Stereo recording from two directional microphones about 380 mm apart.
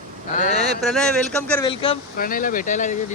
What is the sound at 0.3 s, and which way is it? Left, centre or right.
Speech, centre.